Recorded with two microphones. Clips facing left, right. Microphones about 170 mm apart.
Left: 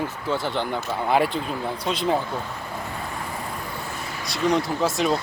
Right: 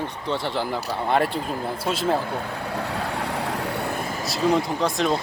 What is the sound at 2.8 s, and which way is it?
Vehicle, 75° right (ahead or behind).